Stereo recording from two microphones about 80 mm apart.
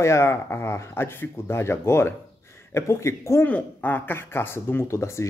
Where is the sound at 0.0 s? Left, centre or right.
Left.